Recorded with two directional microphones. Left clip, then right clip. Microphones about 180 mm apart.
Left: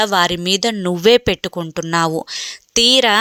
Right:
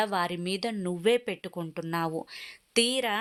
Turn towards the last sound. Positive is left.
turn(degrees=35)  # may be behind; listen again after turning